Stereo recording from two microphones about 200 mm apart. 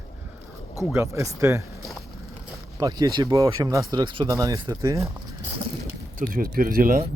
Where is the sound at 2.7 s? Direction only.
15° right (ahead or behind).